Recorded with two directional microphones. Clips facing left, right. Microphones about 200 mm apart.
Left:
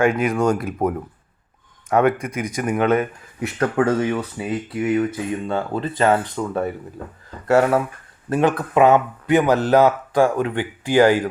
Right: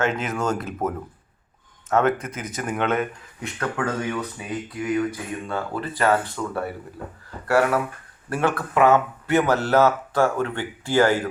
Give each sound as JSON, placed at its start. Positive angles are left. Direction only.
{"t": 0.0, "sound": "speech", "side_deg": 10}
{"t": 3.6, "sound": "speech", "side_deg": 30}